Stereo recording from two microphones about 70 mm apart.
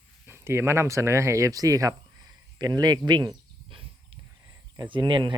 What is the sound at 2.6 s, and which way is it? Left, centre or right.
Speech, right.